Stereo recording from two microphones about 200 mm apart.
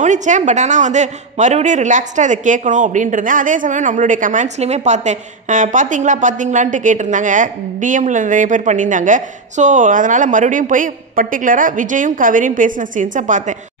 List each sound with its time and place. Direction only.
0.0 s a man's voice: 40° right (ahead or behind)